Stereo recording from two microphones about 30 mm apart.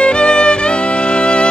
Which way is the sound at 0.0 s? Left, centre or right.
Left.